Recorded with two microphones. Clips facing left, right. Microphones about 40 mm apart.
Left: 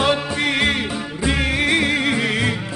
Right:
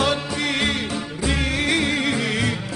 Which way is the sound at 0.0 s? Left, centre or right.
Centre.